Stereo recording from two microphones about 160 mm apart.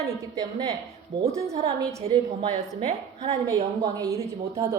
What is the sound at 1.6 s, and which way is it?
Speech, 20° right (ahead or behind).